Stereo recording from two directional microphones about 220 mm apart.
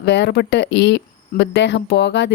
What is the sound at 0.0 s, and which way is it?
Speech, 50° left (ahead or behind).